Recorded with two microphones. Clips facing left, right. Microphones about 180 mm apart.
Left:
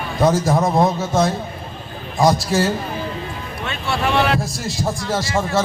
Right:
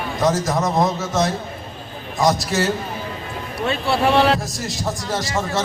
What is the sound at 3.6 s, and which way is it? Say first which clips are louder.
Speech: right 4 dB; 35° right (ahead or behind).